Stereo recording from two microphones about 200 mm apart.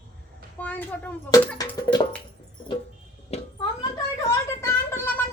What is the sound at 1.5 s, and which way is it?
Music, 20° left (ahead or behind).